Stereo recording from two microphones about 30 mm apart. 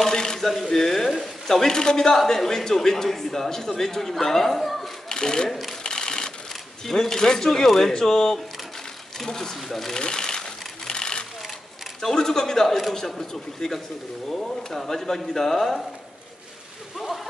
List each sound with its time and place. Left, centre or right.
0.0 s a sound: left
0.7 s a man's voice: centre
5.1 s speech: left
5.5 s speech: centre
5.9 s sewing machine: left
6.9 s a man's voice: centre
9.2 s a man's voice: centre
9.9 s sewing machine: left
12.0 s a man's voice: centre